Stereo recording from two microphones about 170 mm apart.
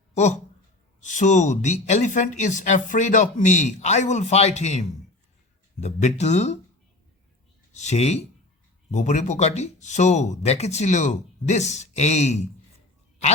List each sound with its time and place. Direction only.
0.1 s speech: 45° left (ahead or behind)
7.7 s speech: 45° left (ahead or behind)